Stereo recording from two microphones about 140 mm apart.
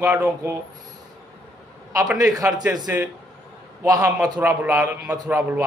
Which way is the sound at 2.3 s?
25° right (ahead or behind).